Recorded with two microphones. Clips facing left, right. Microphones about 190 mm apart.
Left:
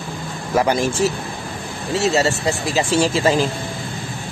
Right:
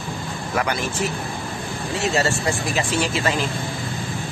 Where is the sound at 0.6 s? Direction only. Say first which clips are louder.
Left 7 dB; 30° left (ahead or behind).